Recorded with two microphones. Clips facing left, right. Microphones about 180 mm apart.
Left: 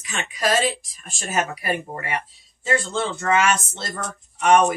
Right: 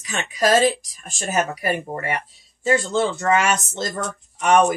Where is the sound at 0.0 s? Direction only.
40° right (ahead or behind).